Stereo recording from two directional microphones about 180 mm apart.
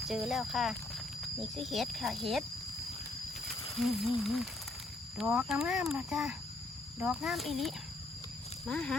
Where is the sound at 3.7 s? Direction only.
Centre (ahead or behind).